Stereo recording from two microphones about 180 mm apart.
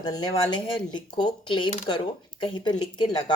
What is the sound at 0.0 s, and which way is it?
Speech, 25° left (ahead or behind).